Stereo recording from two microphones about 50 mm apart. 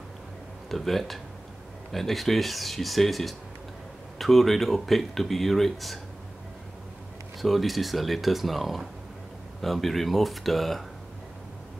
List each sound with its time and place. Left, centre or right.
0.7 s speech: centre
7.4 s speech: centre